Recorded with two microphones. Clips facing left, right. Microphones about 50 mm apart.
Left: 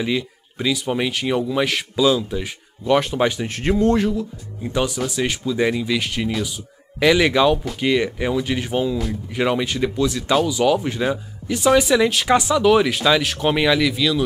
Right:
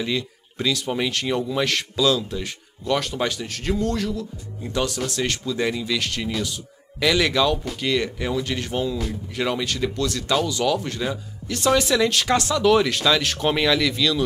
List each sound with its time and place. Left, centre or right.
0.0 s speech: centre
4.2 s a man's voice: centre